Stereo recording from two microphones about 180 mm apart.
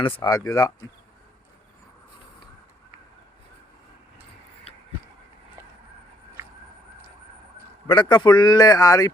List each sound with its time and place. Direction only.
0.0 s speech: 25° left (ahead or behind)
7.9 s speech: 25° left (ahead or behind)